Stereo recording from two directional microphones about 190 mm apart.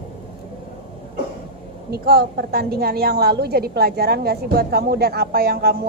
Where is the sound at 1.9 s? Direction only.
55° right (ahead or behind).